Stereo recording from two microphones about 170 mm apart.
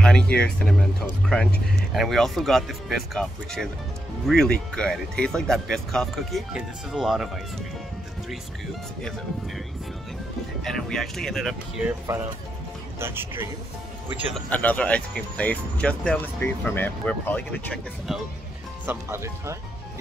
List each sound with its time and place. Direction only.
0.0 s speech: 5° left (ahead or behind)
2.0 s speech: centre (ahead or behind)
10.6 s speech: centre (ahead or behind)
12.1 s a man's voice: 15° right (ahead or behind)
14.3 s speech: 10° left (ahead or behind)
18.9 s speech: 15° right (ahead or behind)